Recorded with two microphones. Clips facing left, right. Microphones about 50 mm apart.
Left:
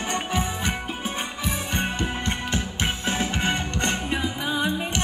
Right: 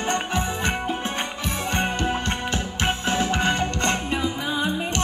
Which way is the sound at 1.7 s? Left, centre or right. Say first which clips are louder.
Right 5 dB; right.